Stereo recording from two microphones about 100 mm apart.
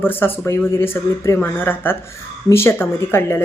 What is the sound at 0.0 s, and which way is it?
A woman's voice, 20° left (ahead or behind).